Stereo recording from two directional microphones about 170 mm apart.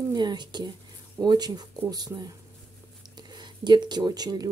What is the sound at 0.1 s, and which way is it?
Speech, 25° right (ahead or behind).